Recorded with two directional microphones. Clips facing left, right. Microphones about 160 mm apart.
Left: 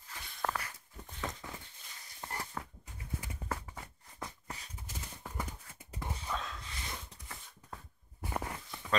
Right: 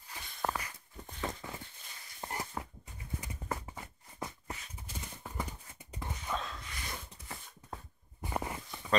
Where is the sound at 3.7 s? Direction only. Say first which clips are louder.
Right 3 dB; 10° right (ahead or behind).